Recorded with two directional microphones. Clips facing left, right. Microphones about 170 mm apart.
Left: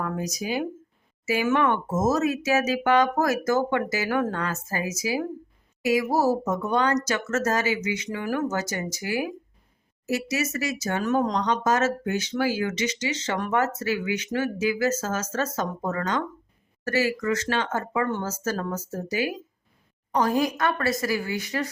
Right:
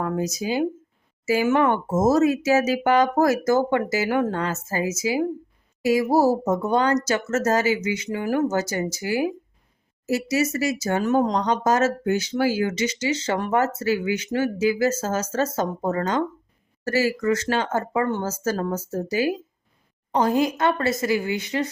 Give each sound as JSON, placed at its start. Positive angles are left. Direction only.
{"t": 0.0, "sound": "speech", "side_deg": -25}